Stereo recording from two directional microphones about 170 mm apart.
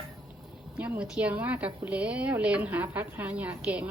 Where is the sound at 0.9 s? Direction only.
5° right (ahead or behind).